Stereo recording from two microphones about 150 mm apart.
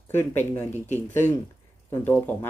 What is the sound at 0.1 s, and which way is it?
Speech, 15° left (ahead or behind).